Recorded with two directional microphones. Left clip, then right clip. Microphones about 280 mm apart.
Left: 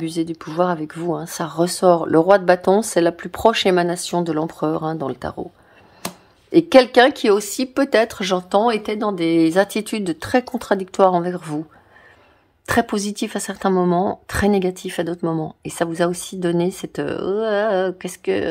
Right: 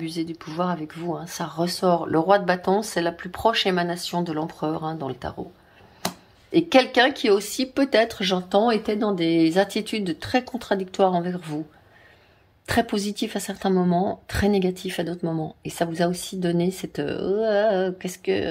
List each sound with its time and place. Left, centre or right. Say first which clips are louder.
0.0 s speech: left 6 dB; left
6.5 s speech: left 6 dB; left
12.6 s speech: left 4 dB; centre